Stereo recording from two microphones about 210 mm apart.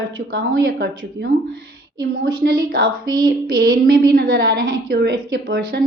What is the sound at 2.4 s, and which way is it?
A woman's voice, 45° right (ahead or behind).